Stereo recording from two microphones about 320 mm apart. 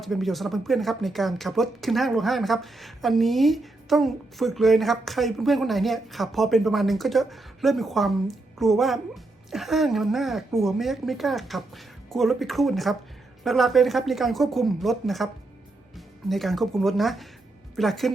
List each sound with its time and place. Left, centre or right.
0.0 s speech: centre